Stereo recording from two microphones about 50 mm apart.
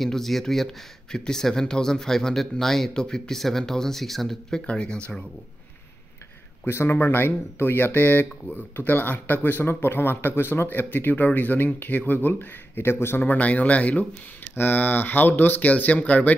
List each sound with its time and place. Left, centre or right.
0.0 s speech: centre
4.6 s speech: centre
6.7 s speech: left
13.2 s speech: left
14.5 s speech: left
15.7 s speech: left